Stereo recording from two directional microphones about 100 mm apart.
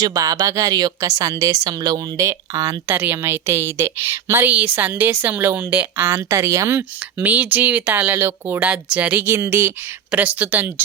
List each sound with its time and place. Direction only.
0.0 s a woman's voice: 35° right (ahead or behind); by 9.2 s 15° right (ahead or behind)
9.2 s a woman's voice: 25° right (ahead or behind)